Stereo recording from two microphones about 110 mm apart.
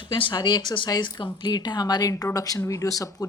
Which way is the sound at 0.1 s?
50° left (ahead or behind).